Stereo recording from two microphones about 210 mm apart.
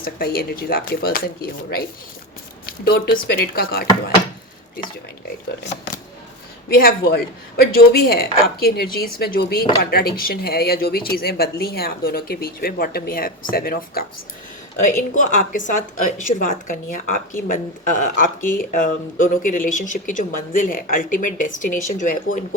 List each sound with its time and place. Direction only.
0.0 s speech: 45° left (ahead or behind)
2.8 s speech: 45° left (ahead or behind)
6.7 s speech: 45° left (ahead or behind)